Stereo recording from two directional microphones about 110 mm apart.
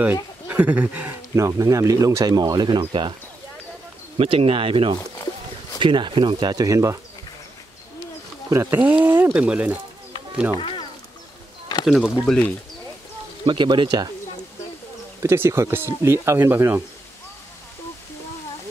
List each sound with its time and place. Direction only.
0.0 s speech: 15° right (ahead or behind)
1.3 s speech: 30° right (ahead or behind); by 3.2 s 45° right (ahead or behind)
4.2 s speech: 55° right (ahead or behind); by 7.0 s 30° right (ahead or behind)
8.5 s speech: 25° right (ahead or behind)
10.6 s music: 50° left (ahead or behind)
11.8 s speech: 5° right (ahead or behind)
12.3 s speech: 15° left (ahead or behind)
13.5 s speech: 45° right (ahead or behind)
15.2 s speech: 25° right (ahead or behind)